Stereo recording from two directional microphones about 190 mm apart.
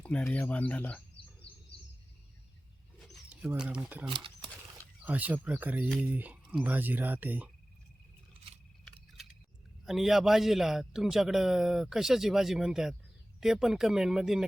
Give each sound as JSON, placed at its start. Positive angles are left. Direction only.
{"t": 0.0, "sound": "speech", "side_deg": 5}
{"t": 3.0, "sound": "a sound", "side_deg": 0}
{"t": 4.0, "sound": "speech", "side_deg": -25}
{"t": 5.0, "sound": "speech", "side_deg": -10}
{"t": 9.8, "sound": "a man's voice", "side_deg": 0}